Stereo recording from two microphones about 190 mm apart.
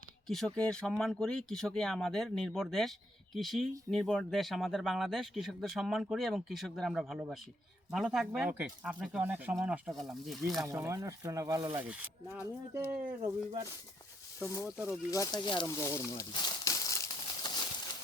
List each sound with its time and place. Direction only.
0.3 s speech: centre (ahead or behind)
10.7 s speech: 15° right (ahead or behind)
11.8 s speech: 10° right (ahead or behind)
14.8 s goat: 15° left (ahead or behind)